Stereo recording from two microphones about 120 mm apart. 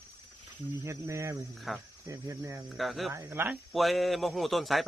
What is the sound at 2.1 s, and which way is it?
Cricket, 25° right (ahead or behind).